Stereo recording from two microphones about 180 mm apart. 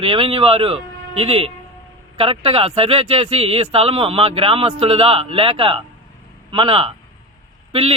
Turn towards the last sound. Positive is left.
turn(degrees=-30)  # may be behind; listen again after turning